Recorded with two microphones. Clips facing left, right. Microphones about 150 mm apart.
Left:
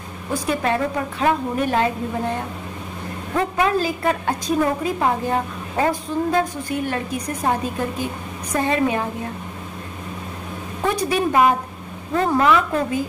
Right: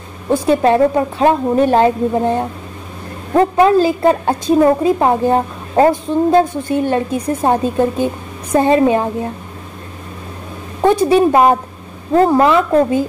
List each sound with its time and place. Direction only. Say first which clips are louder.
0.3 s a woman's voice: right 9 dB; 30° right (ahead or behind)
10.8 s a woman's voice: right 10 dB; 30° right (ahead or behind)